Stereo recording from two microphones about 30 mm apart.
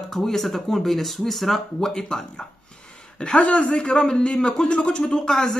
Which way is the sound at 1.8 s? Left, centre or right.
Centre.